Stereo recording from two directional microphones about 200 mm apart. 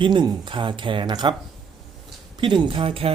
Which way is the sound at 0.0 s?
20° right (ahead or behind).